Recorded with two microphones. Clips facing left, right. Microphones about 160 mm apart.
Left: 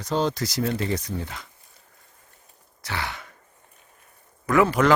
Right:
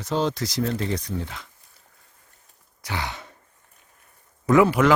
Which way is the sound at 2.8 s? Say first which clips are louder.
Right 1 dB; 15° right (ahead or behind).